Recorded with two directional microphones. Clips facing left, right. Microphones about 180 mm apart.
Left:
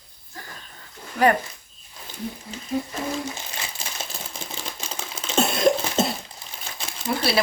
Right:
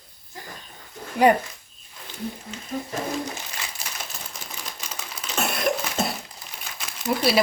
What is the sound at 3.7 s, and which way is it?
Typewriter, 25° left (ahead or behind).